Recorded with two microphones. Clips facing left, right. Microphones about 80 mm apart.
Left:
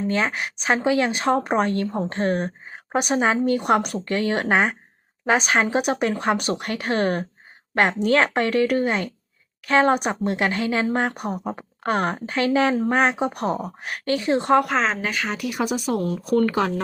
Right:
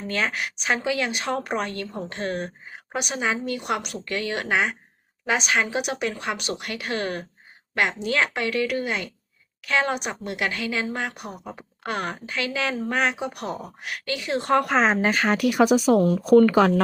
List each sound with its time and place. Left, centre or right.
0.1 s speech: left
14.5 s speech: centre
15.0 s speech: right
15.4 s speech: right